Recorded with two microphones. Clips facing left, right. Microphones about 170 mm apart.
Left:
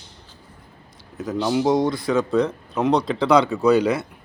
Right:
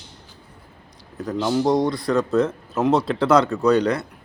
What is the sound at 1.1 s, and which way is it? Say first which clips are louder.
Speech: even; centre (ahead or behind).